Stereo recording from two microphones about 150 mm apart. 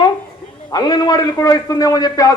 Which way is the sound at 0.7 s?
30° left (ahead or behind).